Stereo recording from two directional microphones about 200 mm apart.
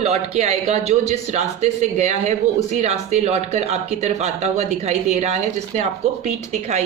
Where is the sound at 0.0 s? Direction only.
35° right (ahead or behind).